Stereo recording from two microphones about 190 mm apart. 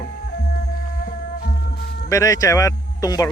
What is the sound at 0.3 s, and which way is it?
Music, 55° left (ahead or behind).